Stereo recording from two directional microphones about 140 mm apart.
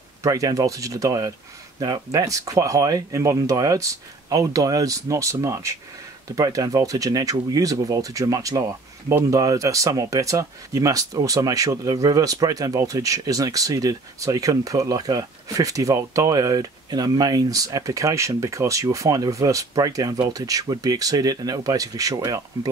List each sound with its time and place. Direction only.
0.2 s speech: 25° right (ahead or behind)